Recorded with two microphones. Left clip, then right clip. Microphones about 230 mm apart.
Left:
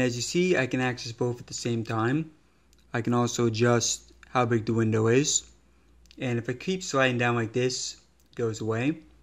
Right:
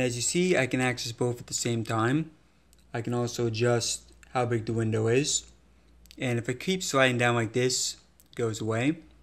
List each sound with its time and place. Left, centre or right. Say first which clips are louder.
0.0 s speech: left 1 dB; centre
2.9 s a man's voice: left 4 dB; left
6.0 s speech: even; centre